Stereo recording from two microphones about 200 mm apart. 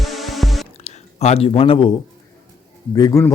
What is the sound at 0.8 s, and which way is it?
Speech, 35° left (ahead or behind).